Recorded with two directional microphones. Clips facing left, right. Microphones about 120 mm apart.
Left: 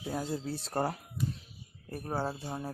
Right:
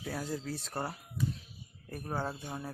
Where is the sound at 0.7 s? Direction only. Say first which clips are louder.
Left 7 dB; 45° left (ahead or behind).